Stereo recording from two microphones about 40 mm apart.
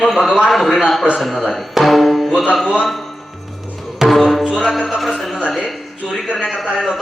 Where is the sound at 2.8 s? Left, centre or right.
Centre.